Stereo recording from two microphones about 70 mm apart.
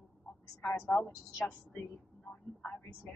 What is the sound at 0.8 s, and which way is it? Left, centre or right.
Speech, left.